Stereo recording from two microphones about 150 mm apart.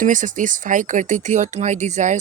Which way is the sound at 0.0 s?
60° right (ahead or behind).